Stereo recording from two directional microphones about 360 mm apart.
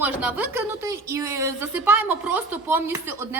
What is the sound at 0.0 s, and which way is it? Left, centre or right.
Speech, centre.